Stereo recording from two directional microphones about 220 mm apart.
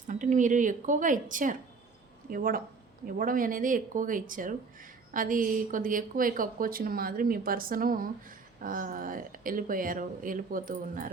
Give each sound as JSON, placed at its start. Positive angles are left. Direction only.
{"t": 0.1, "sound": "a woman's voice", "side_deg": -35}